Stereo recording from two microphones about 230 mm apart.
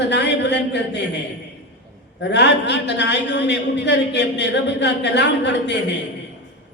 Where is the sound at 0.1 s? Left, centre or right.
Left.